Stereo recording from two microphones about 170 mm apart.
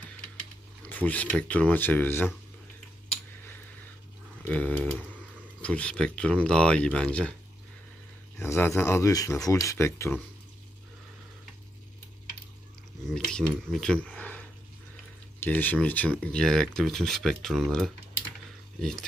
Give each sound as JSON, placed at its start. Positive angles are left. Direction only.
{"t": 0.8, "sound": "speech", "side_deg": 10}
{"t": 4.5, "sound": "speech", "side_deg": 10}
{"t": 8.4, "sound": "speech", "side_deg": 15}
{"t": 13.0, "sound": "cutlery", "side_deg": 5}
{"t": 13.7, "sound": "speech", "side_deg": 5}
{"t": 15.4, "sound": "speech", "side_deg": 10}